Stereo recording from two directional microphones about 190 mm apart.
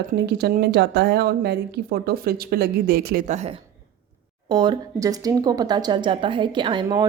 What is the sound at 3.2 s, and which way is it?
Speech, 40° right (ahead or behind).